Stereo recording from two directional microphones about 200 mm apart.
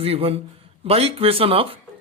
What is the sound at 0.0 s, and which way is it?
Speech, 30° right (ahead or behind).